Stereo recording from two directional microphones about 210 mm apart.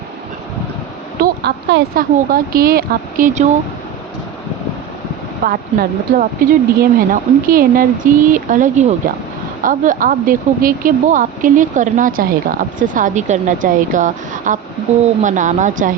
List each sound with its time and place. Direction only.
1.2 s speech: 50° right (ahead or behind)
5.4 s speech: 45° right (ahead or behind)